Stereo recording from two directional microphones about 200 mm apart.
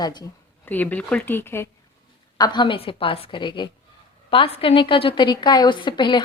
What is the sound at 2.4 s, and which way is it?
A woman's voice, 20° left (ahead or behind).